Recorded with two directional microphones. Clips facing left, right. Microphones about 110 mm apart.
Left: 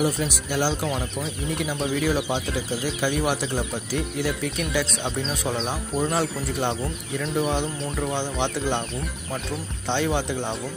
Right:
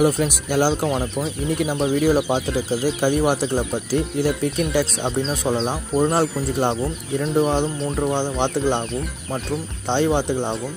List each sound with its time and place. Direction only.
0.0 s speech: 45° right (ahead or behind)
0.8 s speech: 30° right (ahead or behind)
9.8 s speech: 30° right (ahead or behind)